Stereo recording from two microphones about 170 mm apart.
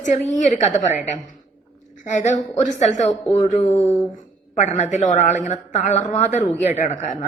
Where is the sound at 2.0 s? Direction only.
45° left (ahead or behind).